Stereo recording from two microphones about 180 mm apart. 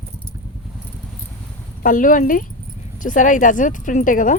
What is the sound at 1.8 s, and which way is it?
Speech, 50° left (ahead or behind).